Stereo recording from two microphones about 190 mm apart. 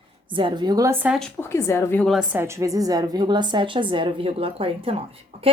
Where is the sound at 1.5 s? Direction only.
15° left (ahead or behind).